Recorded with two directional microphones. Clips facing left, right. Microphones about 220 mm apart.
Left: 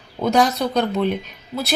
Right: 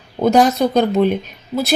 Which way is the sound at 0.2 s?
50° right (ahead or behind).